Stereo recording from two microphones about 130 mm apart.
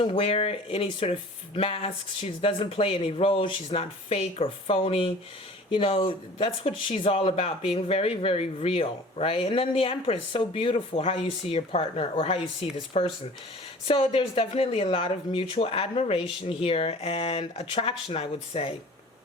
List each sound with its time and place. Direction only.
0.0 s speech: 45° left (ahead or behind)